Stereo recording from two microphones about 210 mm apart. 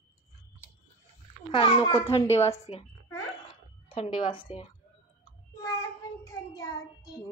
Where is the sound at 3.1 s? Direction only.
25° left (ahead or behind).